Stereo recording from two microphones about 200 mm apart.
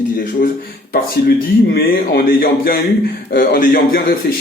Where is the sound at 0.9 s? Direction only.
50° left (ahead or behind).